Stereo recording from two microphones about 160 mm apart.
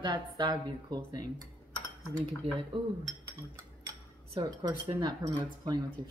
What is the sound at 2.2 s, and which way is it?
Speech, 35° right (ahead or behind).